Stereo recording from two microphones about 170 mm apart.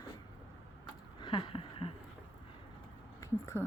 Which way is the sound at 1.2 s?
30° left (ahead or behind).